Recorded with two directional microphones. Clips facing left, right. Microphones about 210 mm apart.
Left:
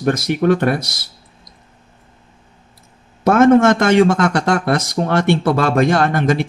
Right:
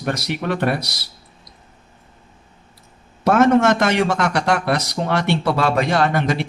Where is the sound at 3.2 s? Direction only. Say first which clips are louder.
Left 4 dB; 50° left (ahead or behind).